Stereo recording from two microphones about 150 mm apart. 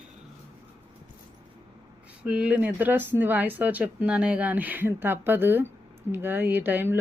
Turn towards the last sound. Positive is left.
turn(degrees=-15)  # may be behind; listen again after turning